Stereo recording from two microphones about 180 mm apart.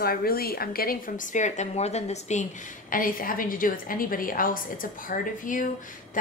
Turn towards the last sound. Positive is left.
turn(degrees=50)  # may be behind; listen again after turning